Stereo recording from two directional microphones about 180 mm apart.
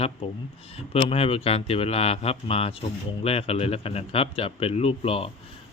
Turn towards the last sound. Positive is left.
turn(degrees=35)  # may be behind; listen again after turning